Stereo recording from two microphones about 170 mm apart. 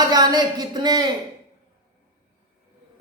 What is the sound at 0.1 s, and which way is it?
Speech, 20° right (ahead or behind).